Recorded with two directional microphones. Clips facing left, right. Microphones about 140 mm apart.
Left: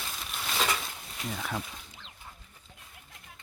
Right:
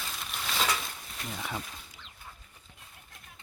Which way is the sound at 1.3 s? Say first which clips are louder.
Left 2 dB; centre (ahead or behind).